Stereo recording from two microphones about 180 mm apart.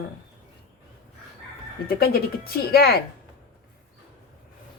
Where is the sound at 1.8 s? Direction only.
60° left (ahead or behind).